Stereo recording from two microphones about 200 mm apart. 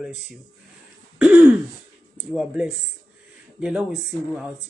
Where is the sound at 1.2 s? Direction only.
5° right (ahead or behind).